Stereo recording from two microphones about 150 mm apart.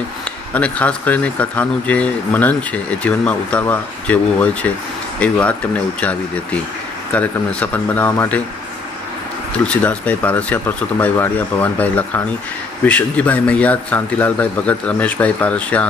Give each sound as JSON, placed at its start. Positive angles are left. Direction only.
{"t": 0.6, "sound": "speech", "side_deg": 10}
{"t": 7.1, "sound": "speech", "side_deg": 10}
{"t": 9.7, "sound": "speech", "side_deg": 10}